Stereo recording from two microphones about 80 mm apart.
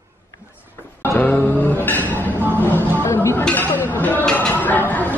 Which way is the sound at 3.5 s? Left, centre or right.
Left.